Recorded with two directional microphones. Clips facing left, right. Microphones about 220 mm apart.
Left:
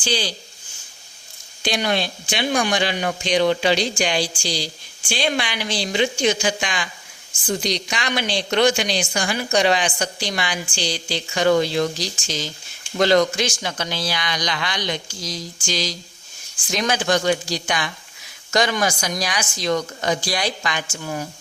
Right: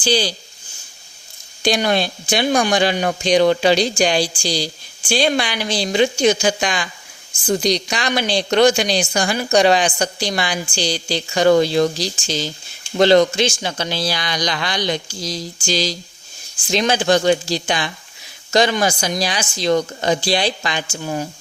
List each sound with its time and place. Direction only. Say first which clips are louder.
0.0 s speech: right 6 dB; 35° right (ahead or behind)
1.6 s speech: right 5 dB; 40° right (ahead or behind)